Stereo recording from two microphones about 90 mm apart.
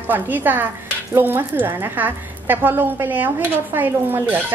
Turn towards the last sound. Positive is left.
turn(degrees=-20)  # may be behind; listen again after turning